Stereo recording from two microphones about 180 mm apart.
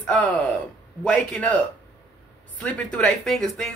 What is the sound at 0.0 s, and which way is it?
Speech, 5° left (ahead or behind).